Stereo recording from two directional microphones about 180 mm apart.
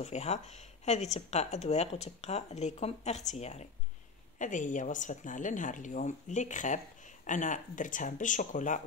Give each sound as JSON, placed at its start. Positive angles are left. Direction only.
{"t": 0.0, "sound": "a woman's voice", "side_deg": 40}